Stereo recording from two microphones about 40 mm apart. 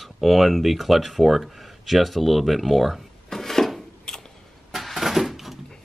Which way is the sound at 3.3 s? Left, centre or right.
Centre.